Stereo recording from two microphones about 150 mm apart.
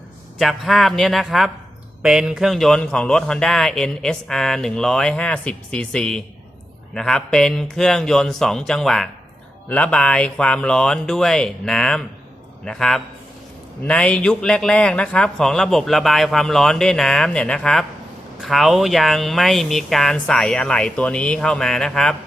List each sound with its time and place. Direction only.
0.3 s speech: centre (ahead or behind)